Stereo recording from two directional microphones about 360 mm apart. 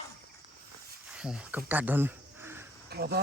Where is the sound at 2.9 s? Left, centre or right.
Right.